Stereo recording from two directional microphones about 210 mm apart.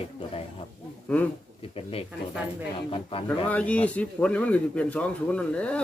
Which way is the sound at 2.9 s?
25° left (ahead or behind).